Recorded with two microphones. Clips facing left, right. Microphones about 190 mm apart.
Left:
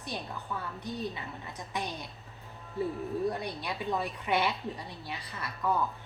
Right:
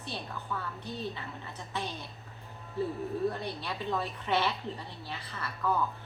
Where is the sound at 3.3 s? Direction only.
15° left (ahead or behind).